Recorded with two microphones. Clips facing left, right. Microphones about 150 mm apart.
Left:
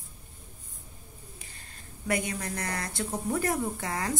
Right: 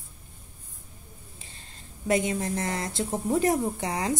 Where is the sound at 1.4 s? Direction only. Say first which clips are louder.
Right 1 dB; 25° right (ahead or behind).